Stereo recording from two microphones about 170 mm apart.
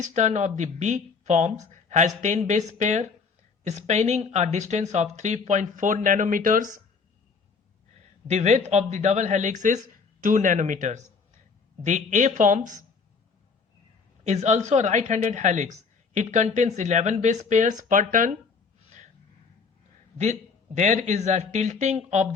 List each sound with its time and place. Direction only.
0.0 s speech: 45° right (ahead or behind)
8.3 s speech: 45° right (ahead or behind)
14.3 s speech: 45° right (ahead or behind)
20.7 s speech: 45° right (ahead or behind)